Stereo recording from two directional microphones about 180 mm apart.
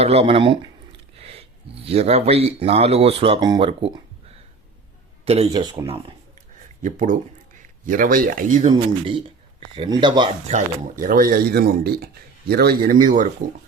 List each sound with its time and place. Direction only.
0.0 s speech: 35° right (ahead or behind)
5.5 s speech: 20° right (ahead or behind)
6.8 s speech: 45° right (ahead or behind)
9.0 s speech: 30° right (ahead or behind)
10.5 s speech: 45° right (ahead or behind)